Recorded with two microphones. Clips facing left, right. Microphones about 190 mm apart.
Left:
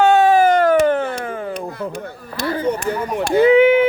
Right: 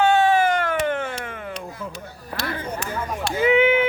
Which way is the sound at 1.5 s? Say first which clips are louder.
Left 7 dB; 60° left (ahead or behind).